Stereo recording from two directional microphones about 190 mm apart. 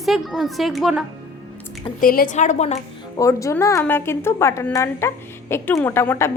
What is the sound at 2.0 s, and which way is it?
Speech, 50° left (ahead or behind).